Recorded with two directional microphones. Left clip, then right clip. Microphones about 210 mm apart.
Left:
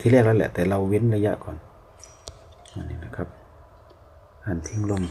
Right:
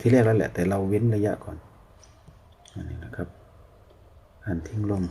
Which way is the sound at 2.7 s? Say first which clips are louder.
Left 2 dB; 5° left (ahead or behind).